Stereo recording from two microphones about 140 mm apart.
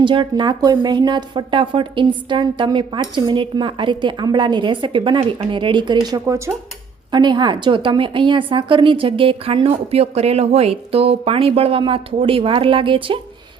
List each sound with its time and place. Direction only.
0.0 s a woman's voice: 35° right (ahead or behind)
7.1 s a woman's voice: 30° right (ahead or behind)